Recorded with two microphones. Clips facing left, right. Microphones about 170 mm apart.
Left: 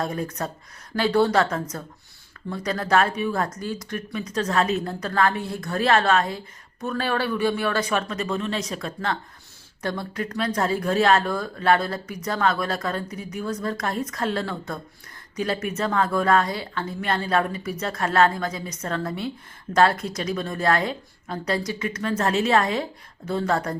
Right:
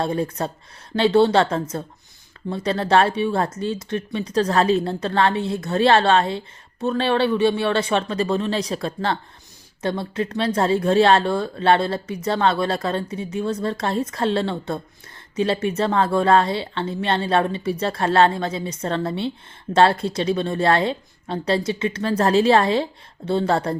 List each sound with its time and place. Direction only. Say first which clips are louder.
0.0 s speech: right 4 dB; 30° right (ahead or behind)